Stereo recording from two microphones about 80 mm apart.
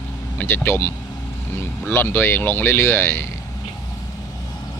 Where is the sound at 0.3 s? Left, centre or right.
Left.